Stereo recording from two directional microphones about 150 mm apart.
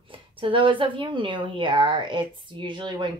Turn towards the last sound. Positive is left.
turn(degrees=-30)  # may be behind; listen again after turning